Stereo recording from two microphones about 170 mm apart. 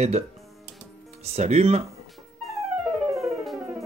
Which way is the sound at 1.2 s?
40° right (ahead or behind).